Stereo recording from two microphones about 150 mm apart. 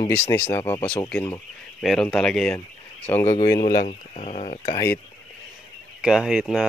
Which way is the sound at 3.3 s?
30° left (ahead or behind).